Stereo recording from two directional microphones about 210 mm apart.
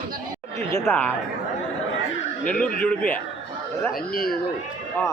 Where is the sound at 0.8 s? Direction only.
5° left (ahead or behind).